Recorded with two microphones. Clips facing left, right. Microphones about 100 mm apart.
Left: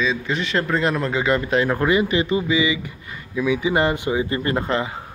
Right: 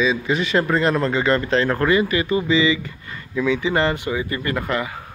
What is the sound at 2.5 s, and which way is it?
Speech, 10° left (ahead or behind).